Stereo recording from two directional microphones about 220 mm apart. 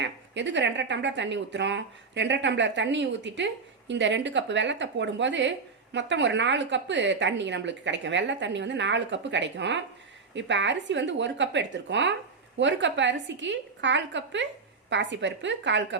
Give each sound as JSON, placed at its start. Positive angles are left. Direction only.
{"t": 0.0, "sound": "a woman's voice", "side_deg": -55}